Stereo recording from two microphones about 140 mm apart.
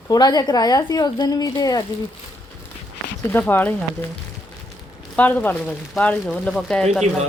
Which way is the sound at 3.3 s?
15° left (ahead or behind).